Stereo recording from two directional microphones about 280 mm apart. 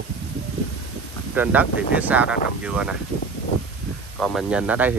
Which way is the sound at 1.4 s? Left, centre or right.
Centre.